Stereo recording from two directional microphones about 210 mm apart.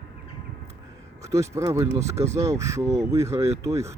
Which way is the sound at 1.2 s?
15° right (ahead or behind).